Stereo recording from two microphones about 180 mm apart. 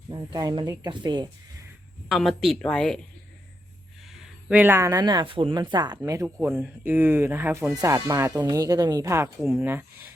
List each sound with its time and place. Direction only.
0.3 s speech: 20° right (ahead or behind)
2.0 s speech: centre (ahead or behind)
4.4 s speech: 10° right (ahead or behind)